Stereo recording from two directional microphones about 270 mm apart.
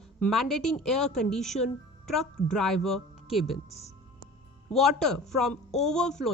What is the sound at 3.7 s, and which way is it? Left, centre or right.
Speech, left.